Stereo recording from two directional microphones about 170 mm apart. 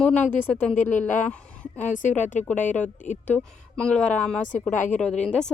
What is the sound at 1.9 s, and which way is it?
Speech, 45° left (ahead or behind).